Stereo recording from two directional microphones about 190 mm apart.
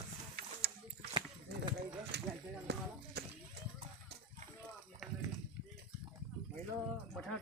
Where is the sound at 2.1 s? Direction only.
60° right (ahead or behind).